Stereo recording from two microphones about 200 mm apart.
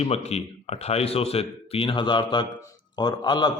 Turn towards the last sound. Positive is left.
turn(degrees=20)  # may be behind; listen again after turning